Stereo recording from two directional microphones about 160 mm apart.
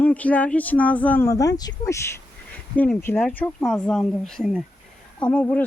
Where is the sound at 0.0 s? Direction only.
10° left (ahead or behind).